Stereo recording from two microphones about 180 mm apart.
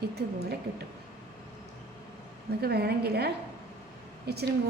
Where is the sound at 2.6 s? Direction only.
60° right (ahead or behind).